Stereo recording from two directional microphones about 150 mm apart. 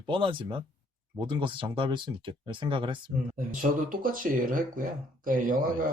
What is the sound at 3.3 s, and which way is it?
Speech, 65° right (ahead or behind).